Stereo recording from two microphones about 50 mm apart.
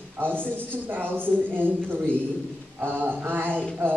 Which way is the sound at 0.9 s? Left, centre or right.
Right.